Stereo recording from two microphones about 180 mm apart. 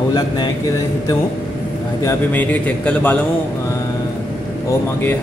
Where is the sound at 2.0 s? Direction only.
10° left (ahead or behind).